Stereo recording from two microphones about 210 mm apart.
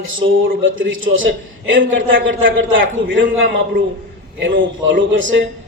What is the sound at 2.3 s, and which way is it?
Speech, 65° right (ahead or behind).